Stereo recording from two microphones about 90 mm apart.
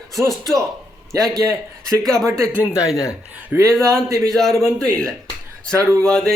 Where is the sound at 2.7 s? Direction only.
40° left (ahead or behind).